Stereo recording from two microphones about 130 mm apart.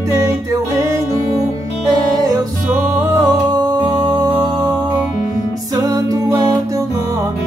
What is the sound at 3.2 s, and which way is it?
Music, 30° right (ahead or behind).